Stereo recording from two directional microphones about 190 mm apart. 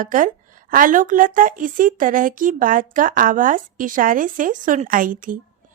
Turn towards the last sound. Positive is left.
turn(degrees=-45)  # may be behind; listen again after turning